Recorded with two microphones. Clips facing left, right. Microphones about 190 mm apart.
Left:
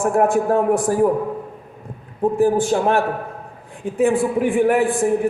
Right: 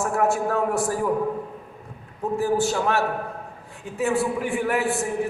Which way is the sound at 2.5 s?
50° left (ahead or behind).